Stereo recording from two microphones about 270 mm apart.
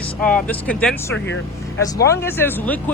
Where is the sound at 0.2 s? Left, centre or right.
Centre.